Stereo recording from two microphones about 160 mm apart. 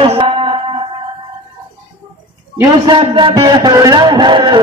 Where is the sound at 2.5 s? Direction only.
20° right (ahead or behind).